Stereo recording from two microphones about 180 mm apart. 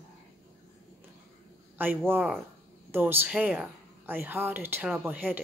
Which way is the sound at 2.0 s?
10° right (ahead or behind).